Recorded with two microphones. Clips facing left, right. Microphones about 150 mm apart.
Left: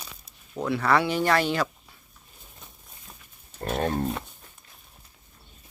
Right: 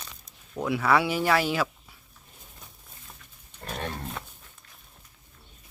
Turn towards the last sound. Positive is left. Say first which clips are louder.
# left 9 dB
turn(degrees=40)  # may be behind; listen again after turning